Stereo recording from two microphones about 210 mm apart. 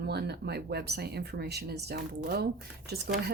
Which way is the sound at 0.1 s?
50° right (ahead or behind).